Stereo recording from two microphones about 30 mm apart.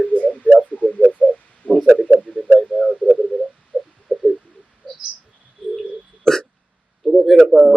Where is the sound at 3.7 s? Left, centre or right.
Left.